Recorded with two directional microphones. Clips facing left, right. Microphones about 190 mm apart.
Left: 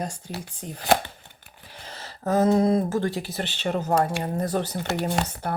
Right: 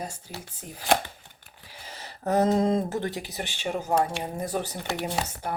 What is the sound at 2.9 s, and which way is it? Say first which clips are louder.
Speech: left 4 dB; 20° right (ahead or behind).